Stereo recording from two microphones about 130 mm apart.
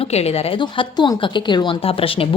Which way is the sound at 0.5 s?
35° left (ahead or behind).